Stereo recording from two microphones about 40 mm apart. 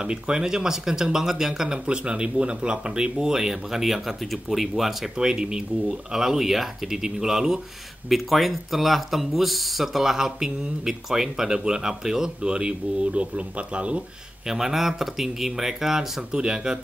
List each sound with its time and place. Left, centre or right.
0.0 s speech: right
1.9 s speech: right; by 5.1 s centre
5.1 s speech: centre
8.1 s speech: centre
13.0 s speech: right
14.5 s speech: centre